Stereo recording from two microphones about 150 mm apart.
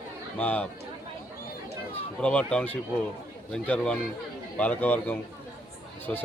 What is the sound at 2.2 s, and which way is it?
A man's voice, 5° left (ahead or behind).